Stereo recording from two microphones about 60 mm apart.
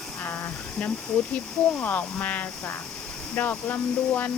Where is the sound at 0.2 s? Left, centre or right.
Left.